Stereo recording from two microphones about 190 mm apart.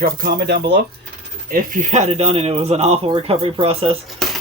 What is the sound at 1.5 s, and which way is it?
Speech, 45° right (ahead or behind).